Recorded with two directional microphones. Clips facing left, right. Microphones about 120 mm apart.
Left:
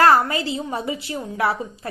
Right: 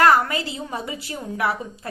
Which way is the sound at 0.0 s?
30° left (ahead or behind).